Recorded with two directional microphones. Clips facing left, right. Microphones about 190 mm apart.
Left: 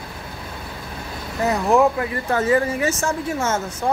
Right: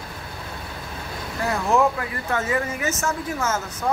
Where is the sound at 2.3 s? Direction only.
35° left (ahead or behind).